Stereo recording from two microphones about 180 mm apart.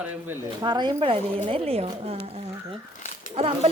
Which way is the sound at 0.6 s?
25° right (ahead or behind).